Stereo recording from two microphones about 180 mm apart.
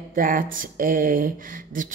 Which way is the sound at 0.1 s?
50° right (ahead or behind).